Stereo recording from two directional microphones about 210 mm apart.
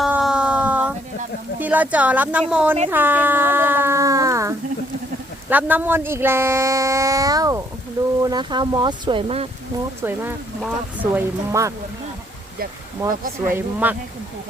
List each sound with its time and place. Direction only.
0.0 s a sound: centre (ahead or behind)
1.5 s speech: 10° right (ahead or behind); by 9.5 s 25° right (ahead or behind)
10.0 s speech: 10° right (ahead or behind)
13.0 s speech: 15° right (ahead or behind)